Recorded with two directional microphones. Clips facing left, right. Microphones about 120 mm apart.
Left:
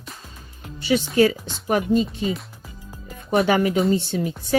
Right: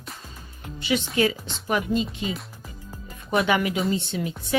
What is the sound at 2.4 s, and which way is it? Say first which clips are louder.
Music: even; centre (ahead or behind).